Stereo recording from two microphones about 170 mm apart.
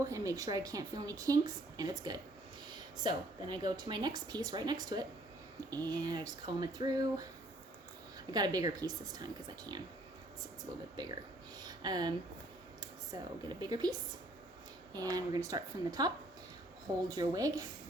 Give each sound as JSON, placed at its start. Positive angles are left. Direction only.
{"t": 0.0, "sound": "a woman's voice", "side_deg": -20}
{"t": 8.3, "sound": "a woman's voice", "side_deg": -25}
{"t": 11.6, "sound": "a sound", "side_deg": -25}
{"t": 12.8, "sound": "speech", "side_deg": -20}
{"t": 14.9, "sound": "a woman's voice", "side_deg": -20}